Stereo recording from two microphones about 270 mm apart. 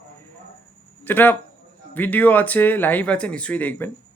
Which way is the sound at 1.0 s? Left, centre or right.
Centre.